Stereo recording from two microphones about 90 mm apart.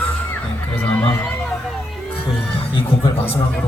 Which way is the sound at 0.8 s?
10° left (ahead or behind).